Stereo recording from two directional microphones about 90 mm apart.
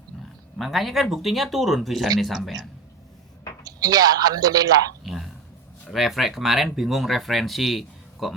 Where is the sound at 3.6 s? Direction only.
45° right (ahead or behind).